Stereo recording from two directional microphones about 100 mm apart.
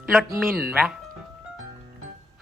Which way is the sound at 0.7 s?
15° right (ahead or behind).